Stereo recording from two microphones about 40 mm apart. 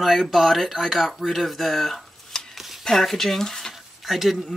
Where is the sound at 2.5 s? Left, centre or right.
Centre.